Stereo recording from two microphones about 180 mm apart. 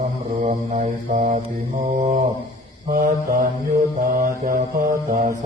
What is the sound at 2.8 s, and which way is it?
Mantra, 50° right (ahead or behind).